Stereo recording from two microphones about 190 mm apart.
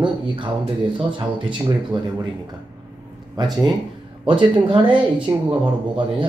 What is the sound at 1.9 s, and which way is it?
Speech, 25° right (ahead or behind).